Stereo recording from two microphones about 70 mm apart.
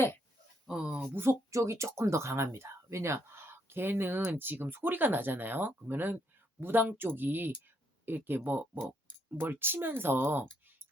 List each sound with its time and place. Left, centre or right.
0.7 s speech: centre
1.1 s speech: right